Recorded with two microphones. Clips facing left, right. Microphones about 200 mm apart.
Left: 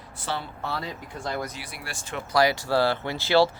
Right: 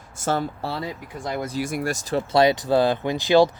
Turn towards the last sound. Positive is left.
turn(degrees=-15)  # may be behind; listen again after turning